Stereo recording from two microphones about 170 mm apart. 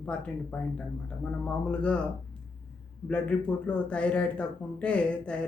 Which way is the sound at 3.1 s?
5° left (ahead or behind).